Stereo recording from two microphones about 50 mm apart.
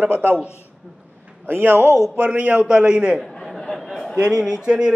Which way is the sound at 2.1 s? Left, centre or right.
Right.